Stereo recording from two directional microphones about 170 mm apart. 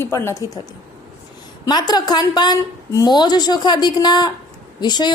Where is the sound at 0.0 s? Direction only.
15° left (ahead or behind).